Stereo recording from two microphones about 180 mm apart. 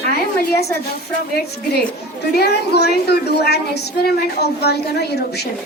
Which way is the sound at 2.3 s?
65° left (ahead or behind).